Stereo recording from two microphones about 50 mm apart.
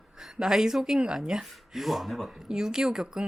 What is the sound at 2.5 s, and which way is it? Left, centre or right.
Speech, centre.